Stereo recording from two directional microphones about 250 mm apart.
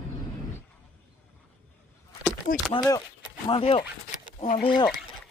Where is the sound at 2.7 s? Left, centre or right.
Centre; by 4.6 s left.